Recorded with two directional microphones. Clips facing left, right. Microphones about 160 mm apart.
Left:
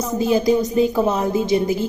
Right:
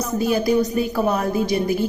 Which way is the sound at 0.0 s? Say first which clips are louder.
Left 2 dB; 20° left (ahead or behind).